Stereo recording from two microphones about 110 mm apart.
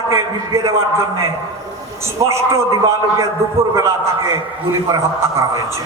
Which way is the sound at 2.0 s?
25° right (ahead or behind).